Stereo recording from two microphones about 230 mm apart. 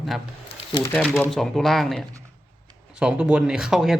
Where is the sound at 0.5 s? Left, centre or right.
Centre.